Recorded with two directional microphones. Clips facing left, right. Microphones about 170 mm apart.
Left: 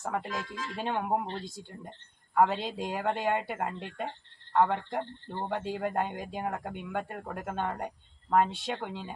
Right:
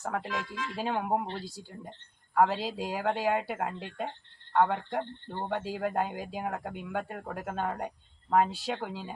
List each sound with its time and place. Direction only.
0.0 s speech: centre (ahead or behind)
0.3 s speech: 40° left (ahead or behind)
0.8 s speech: centre (ahead or behind)